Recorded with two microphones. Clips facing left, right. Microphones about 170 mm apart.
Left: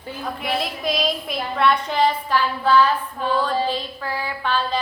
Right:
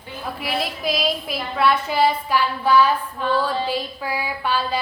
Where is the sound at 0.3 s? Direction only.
5° right (ahead or behind).